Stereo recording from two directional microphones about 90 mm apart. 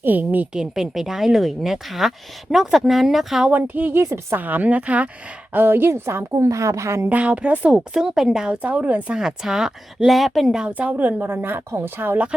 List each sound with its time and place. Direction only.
0.0 s a woman's voice: 20° right (ahead or behind)
0.5 s speech: 5° right (ahead or behind)
3.5 s a woman's voice: 20° right (ahead or behind)
7.1 s a woman's voice: 15° right (ahead or behind)
10.7 s a woman's voice: 15° right (ahead or behind)